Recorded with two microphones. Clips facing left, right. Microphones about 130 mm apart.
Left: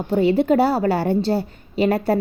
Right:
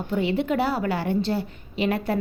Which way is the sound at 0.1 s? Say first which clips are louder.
Left 7 dB; 40° left (ahead or behind).